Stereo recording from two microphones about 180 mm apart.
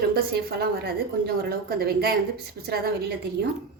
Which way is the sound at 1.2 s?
60° right (ahead or behind).